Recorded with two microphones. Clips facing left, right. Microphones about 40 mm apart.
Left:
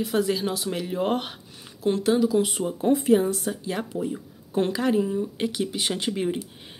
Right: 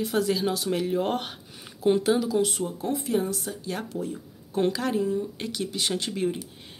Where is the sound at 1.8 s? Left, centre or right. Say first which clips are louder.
Left 1 dB; centre.